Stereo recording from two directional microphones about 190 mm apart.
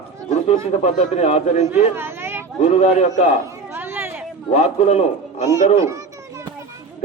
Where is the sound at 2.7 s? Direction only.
35° left (ahead or behind).